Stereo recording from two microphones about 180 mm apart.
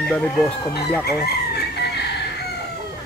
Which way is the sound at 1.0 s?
60° left (ahead or behind).